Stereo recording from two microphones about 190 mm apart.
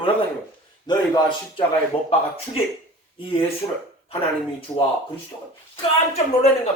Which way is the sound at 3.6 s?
20° left (ahead or behind).